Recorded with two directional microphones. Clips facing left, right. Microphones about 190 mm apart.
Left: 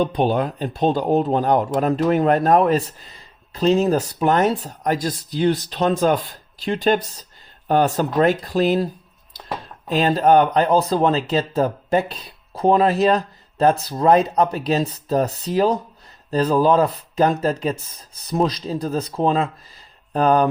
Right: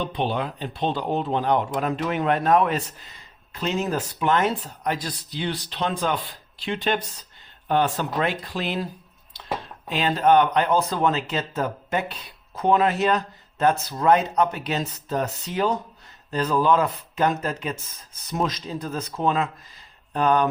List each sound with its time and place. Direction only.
0.0 s speech: 45° left (ahead or behind)
9.9 s speech: 40° left (ahead or behind)